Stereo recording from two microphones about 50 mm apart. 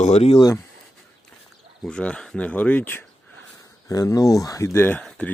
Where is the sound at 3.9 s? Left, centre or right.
Left.